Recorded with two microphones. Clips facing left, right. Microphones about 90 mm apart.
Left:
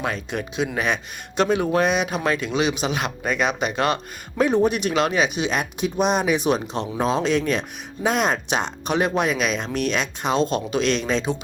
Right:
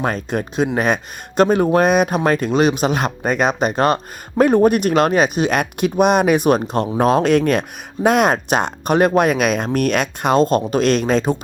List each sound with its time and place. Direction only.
0.0 s speech: 40° right (ahead or behind)